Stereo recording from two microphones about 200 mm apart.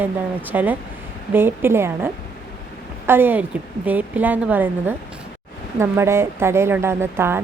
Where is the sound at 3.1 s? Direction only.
10° right (ahead or behind).